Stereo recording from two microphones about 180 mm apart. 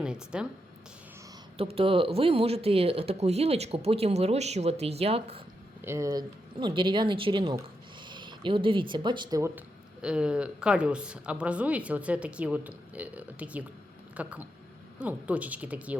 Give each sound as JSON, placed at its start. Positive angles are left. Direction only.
{"t": 0.0, "sound": "a sound", "side_deg": -5}
{"t": 1.5, "sound": "speech", "side_deg": -30}
{"t": 5.8, "sound": "speech", "side_deg": -15}
{"t": 9.6, "sound": "speech", "side_deg": -5}